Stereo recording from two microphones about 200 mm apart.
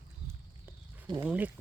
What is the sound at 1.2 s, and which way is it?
Speech, 10° right (ahead or behind).